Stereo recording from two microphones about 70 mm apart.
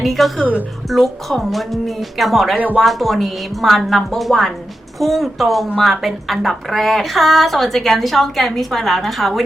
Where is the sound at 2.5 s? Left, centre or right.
Right.